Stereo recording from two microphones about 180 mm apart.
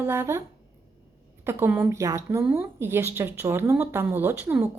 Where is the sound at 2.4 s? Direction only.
5° right (ahead or behind).